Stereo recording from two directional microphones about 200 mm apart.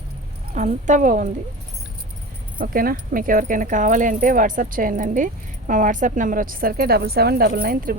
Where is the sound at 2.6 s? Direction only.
45° right (ahead or behind).